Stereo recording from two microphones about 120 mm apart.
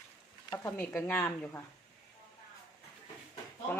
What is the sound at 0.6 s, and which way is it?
Speech, 20° left (ahead or behind).